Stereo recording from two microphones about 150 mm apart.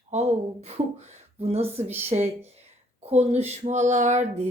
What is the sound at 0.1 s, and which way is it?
Speech, 45° right (ahead or behind).